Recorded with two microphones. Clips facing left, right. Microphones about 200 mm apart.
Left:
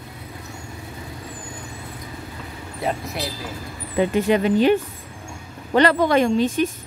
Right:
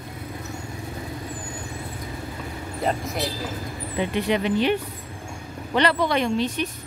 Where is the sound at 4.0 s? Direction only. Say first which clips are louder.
Left 5 dB; 45° left (ahead or behind).